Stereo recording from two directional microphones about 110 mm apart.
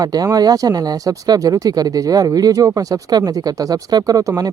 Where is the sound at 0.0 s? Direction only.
35° right (ahead or behind).